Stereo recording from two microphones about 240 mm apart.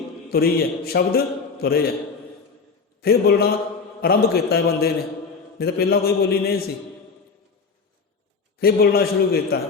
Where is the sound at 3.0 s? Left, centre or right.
Left.